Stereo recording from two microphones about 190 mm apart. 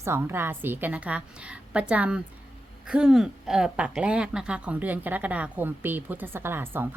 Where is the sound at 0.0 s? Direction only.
10° right (ahead or behind).